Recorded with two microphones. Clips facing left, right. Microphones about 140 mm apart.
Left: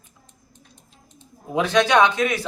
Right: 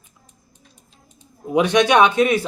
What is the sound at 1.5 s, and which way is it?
Speech, 20° right (ahead or behind).